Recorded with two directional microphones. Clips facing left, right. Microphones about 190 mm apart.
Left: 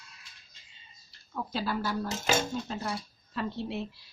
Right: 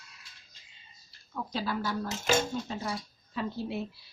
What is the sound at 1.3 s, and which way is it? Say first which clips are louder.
A woman's voice: left 1 dB; centre (ahead or behind).